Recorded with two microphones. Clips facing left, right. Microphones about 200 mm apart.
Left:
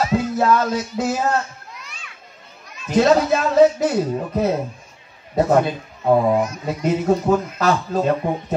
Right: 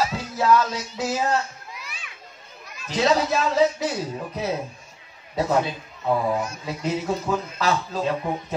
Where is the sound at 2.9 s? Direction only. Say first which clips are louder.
Left 6 dB; 55° left (ahead or behind).